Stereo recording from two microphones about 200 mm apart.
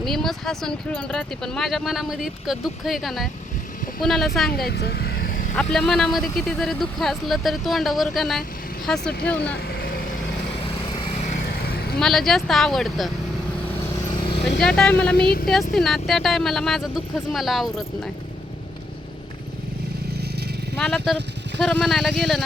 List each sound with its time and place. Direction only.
0.0 s speech: centre (ahead or behind)
4.5 s speech: 50° left (ahead or behind)
5.7 s speech: centre (ahead or behind)
9.6 s vehicle: 55° left (ahead or behind)
10.8 s vehicle: 30° left (ahead or behind)
11.9 s speech: centre (ahead or behind)
14.6 s speech: 5° left (ahead or behind)
15.1 s a woman's voice: 50° left (ahead or behind)
15.7 s speech: centre (ahead or behind)
20.7 s speech: 5° left (ahead or behind)